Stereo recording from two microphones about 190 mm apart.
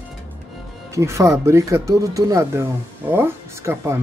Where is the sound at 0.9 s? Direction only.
15° right (ahead or behind).